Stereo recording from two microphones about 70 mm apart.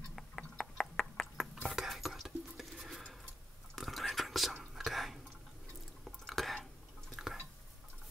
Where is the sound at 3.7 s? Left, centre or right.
Centre.